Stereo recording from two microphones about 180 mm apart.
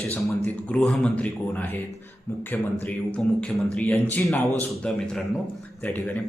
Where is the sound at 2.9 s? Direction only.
5° left (ahead or behind).